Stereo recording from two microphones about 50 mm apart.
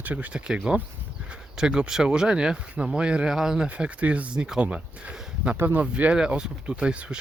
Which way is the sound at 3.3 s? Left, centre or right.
Centre.